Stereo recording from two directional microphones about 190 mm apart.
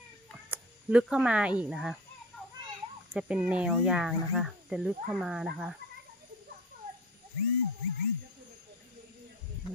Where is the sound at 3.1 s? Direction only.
5° right (ahead or behind).